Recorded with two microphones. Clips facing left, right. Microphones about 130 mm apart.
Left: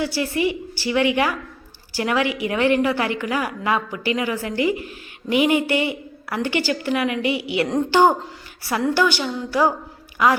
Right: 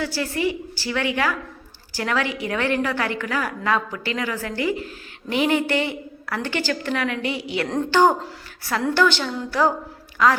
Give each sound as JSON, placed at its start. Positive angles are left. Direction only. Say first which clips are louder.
{"t": 0.0, "sound": "a woman's voice", "louder": "left 2 dB", "side_deg": 15}